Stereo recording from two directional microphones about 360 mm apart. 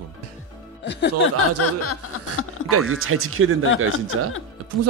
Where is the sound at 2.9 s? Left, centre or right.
Right.